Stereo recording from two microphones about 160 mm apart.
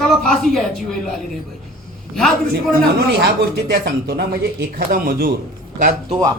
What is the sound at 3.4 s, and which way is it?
Speech, 75° right (ahead or behind).